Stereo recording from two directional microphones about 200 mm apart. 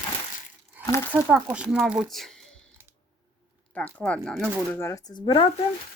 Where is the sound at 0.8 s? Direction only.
15° left (ahead or behind).